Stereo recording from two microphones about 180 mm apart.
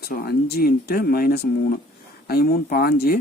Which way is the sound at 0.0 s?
60° left (ahead or behind).